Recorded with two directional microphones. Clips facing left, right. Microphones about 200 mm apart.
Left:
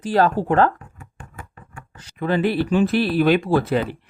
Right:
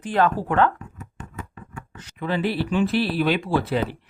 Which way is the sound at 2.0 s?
30° left (ahead or behind).